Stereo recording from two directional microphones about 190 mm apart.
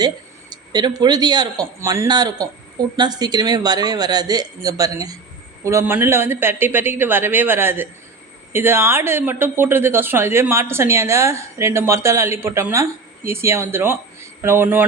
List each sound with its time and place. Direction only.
0.5 s speech: 20° right (ahead or behind)